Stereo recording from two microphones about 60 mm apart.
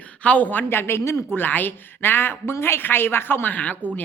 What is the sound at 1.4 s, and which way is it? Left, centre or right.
Speech, left.